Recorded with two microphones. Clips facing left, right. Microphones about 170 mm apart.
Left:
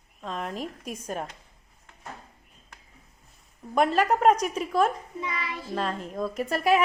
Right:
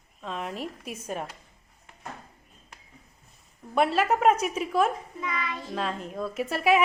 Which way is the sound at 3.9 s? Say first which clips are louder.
Left 2 dB; 5° right (ahead or behind).